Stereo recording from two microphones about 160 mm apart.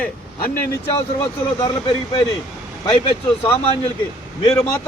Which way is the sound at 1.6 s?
25° left (ahead or behind).